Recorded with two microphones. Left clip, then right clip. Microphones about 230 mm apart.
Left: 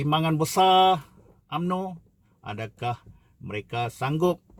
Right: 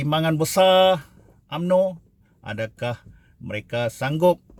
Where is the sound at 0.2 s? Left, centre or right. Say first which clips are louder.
Right 5 dB; centre.